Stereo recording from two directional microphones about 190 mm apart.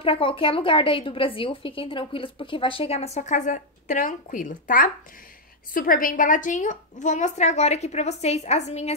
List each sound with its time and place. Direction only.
0.0 s a woman's voice: 30° left (ahead or behind)